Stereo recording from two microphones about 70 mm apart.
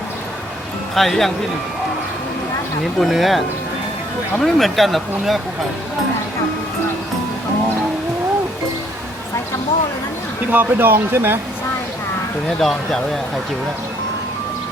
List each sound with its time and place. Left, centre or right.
0.9 s speech: centre
3.0 s speech: centre
10.5 s speech: right
12.5 s speech: centre